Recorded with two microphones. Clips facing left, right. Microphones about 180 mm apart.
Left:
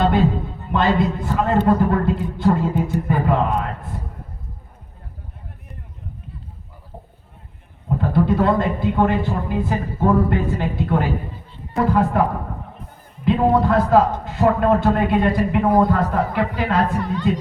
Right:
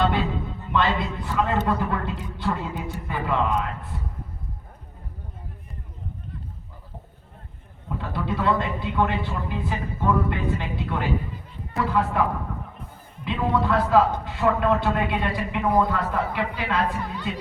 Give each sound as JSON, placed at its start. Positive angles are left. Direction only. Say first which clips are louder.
{"t": 0.0, "sound": "music", "louder": "left 6 dB", "side_deg": 45}
{"t": 0.7, "sound": "a man's voice", "louder": "left 6 dB", "side_deg": 45}
{"t": 7.9, "sound": "a man's voice", "louder": "left 10 dB", "side_deg": 45}